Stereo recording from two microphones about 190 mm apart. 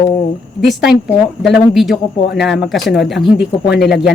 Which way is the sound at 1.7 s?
Centre (ahead or behind).